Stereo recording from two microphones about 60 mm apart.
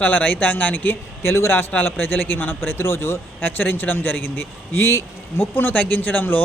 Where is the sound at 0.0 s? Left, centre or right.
Left.